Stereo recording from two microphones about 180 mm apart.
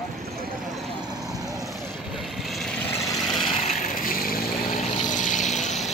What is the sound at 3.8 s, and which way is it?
Vehicle, 50° left (ahead or behind).